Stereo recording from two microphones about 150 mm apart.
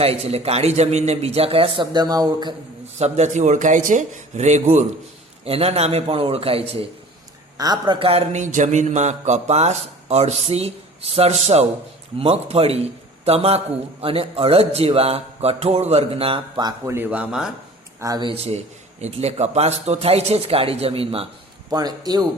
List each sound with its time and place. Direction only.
0.0 s a man's voice: 40° right (ahead or behind)
3.0 s a man's voice: 50° right (ahead or behind)
7.6 s a man's voice: 30° right (ahead or behind)
16.9 s speech: 10° right (ahead or behind)
18.0 s a man's voice: 25° right (ahead or behind)
18.3 s speech: 45° right (ahead or behind)
21.7 s a man's voice: 25° right (ahead or behind)